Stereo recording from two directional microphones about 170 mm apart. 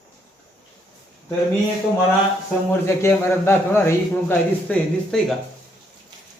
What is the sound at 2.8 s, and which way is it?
A man's voice, 15° left (ahead or behind).